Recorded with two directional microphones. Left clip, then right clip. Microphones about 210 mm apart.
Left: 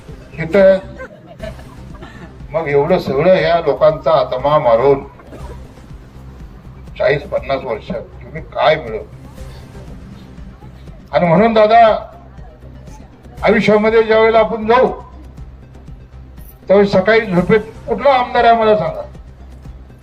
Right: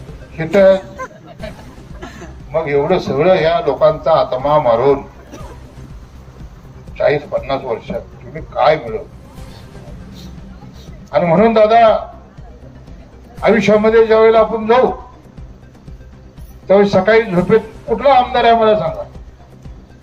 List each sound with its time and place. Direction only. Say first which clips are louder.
0.3 s speech: even; 30° left (ahead or behind)
2.5 s a man's voice: left 1 dB; 30° left (ahead or behind)
6.9 s a man's voice: even; 30° left (ahead or behind)
11.1 s a man's voice: even; 30° left (ahead or behind)
13.4 s a man's voice: even; 30° left (ahead or behind)
16.6 s a man's voice: even; 30° left (ahead or behind)